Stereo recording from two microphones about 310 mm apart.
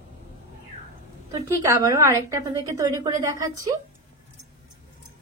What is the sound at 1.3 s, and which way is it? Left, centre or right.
A woman's voice, centre.